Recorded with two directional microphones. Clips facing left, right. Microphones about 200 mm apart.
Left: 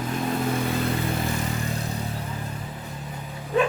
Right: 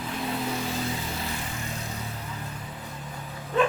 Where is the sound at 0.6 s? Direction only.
60° left (ahead or behind).